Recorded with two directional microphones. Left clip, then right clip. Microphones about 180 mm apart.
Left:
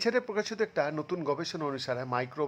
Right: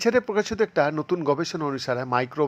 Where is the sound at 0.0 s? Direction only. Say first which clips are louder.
Right 7 dB; 20° right (ahead or behind).